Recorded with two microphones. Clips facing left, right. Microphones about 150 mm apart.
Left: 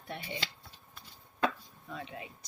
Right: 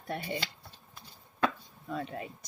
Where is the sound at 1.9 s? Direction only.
45° right (ahead or behind).